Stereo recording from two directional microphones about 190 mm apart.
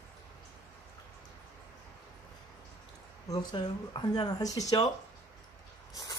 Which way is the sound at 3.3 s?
20° left (ahead or behind).